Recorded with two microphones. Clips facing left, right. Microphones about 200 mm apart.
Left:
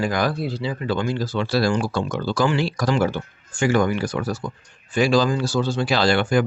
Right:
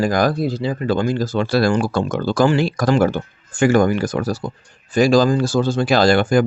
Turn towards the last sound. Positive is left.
turn(degrees=-45)  # may be behind; listen again after turning